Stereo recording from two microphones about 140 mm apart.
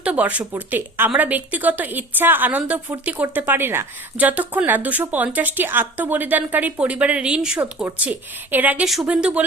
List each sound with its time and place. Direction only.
0.0 s a woman's voice: 10° right (ahead or behind)